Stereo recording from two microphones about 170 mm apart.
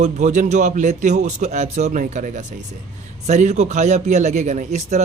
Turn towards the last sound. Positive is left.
turn(degrees=-40)  # may be behind; listen again after turning